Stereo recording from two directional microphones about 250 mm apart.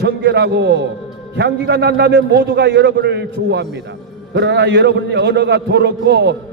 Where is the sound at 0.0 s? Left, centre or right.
Right.